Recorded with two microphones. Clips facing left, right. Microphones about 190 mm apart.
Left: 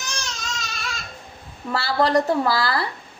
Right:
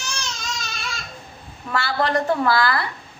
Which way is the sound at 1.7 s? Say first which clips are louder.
Left 2 dB; 35° left (ahead or behind).